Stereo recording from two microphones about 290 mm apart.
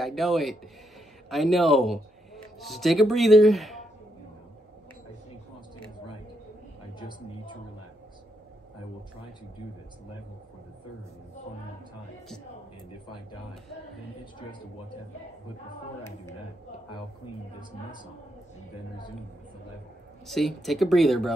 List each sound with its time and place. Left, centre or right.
0.0 s speech: centre
20.2 s speech: centre